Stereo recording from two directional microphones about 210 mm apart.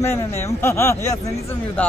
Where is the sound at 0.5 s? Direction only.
10° left (ahead or behind).